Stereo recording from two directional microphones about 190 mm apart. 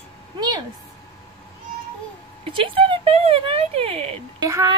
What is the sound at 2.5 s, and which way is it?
Speech, 30° right (ahead or behind).